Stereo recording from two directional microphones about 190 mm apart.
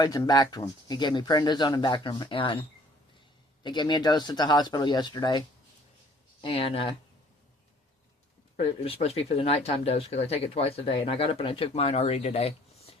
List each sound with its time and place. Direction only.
0.0 s speech: 20° left (ahead or behind)
6.4 s speech: 30° left (ahead or behind)
8.5 s speech: 30° left (ahead or behind)